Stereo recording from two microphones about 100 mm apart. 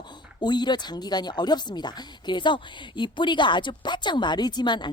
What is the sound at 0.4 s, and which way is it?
Speech, 45° left (ahead or behind).